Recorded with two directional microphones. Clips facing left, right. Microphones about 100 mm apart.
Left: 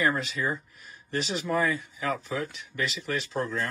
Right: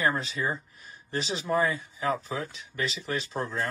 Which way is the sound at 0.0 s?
35° right (ahead or behind).